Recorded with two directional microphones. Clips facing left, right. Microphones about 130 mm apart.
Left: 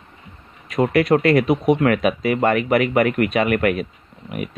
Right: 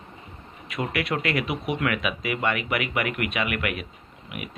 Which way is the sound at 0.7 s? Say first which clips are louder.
Left 11 dB; 40° left (ahead or behind).